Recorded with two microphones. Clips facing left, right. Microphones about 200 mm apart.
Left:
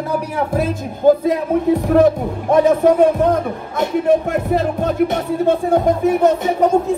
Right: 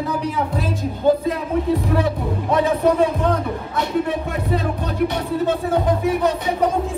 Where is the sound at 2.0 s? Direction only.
50° left (ahead or behind).